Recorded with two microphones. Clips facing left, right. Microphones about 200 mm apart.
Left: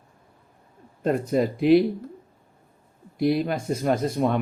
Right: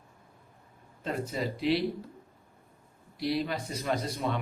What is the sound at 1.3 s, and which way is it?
Speech, 50° left (ahead or behind).